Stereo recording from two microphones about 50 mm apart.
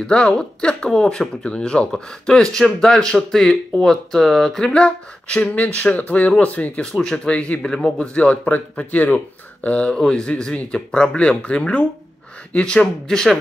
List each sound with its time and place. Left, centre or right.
0.0 s speech: centre
6.8 s speech: centre
7.6 s speech: centre
8.1 s speech: left
12.8 s speech: centre